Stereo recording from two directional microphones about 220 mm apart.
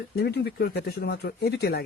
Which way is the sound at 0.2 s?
45° left (ahead or behind).